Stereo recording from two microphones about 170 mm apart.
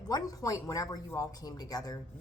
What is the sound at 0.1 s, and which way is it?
A woman's voice, 20° left (ahead or behind).